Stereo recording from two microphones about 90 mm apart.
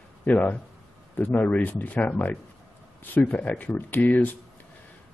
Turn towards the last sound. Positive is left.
turn(degrees=20)  # may be behind; listen again after turning